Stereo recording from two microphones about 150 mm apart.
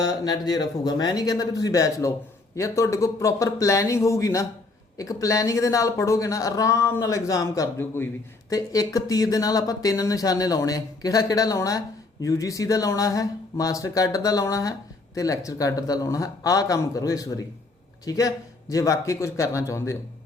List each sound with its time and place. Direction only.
0.0 s speech: 25° left (ahead or behind)